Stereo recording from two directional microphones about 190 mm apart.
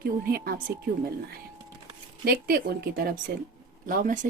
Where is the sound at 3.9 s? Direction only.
45° right (ahead or behind).